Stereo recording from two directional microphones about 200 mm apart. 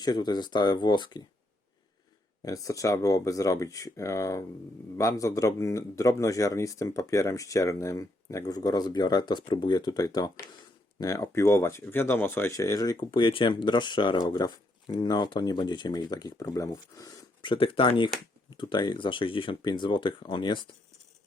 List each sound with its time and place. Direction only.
0.0 s speech: 20° left (ahead or behind)
2.4 s speech: 15° left (ahead or behind)